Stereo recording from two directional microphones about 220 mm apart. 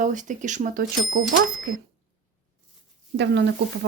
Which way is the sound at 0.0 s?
35° right (ahead or behind).